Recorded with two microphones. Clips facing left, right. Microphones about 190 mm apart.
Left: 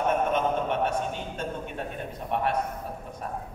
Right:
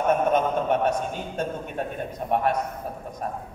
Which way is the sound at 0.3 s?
40° right (ahead or behind).